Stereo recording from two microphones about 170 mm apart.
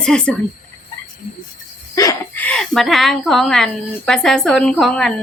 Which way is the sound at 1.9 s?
20° left (ahead or behind).